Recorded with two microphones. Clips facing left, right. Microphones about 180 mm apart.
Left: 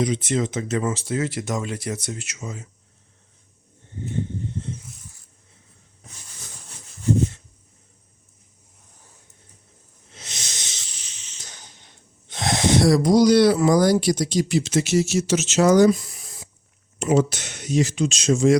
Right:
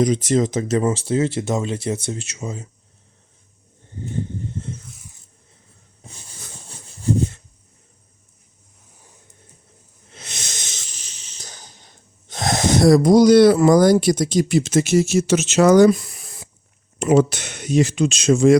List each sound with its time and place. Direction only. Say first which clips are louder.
0.0 s speech: right 5 dB; 40° right (ahead or behind)
6.0 s a sound: right 4 dB; 30° right (ahead or behind)
10.2 s wheeze: right 3 dB; 55° right (ahead or behind)
17.0 s speech: right 4 dB; 60° right (ahead or behind)